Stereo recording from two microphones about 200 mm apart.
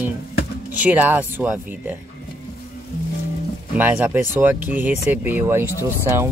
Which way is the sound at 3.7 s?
10° right (ahead or behind).